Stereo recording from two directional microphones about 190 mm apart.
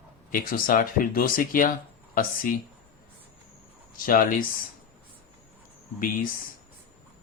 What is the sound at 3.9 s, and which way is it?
Speech, 50° left (ahead or behind).